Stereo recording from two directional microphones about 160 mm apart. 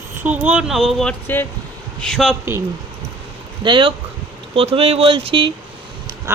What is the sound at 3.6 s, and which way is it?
Speech, 30° right (ahead or behind).